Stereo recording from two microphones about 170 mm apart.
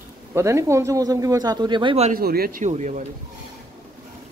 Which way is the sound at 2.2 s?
65° right (ahead or behind).